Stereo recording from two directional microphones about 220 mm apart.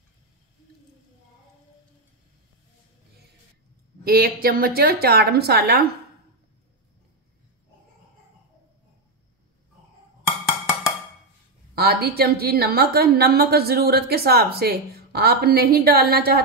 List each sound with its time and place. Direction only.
4.0 s a woman's voice: 45° right (ahead or behind)
11.7 s a woman's voice: 45° right (ahead or behind)